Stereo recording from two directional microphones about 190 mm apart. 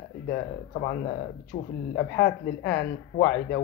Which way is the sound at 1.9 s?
60° left (ahead or behind).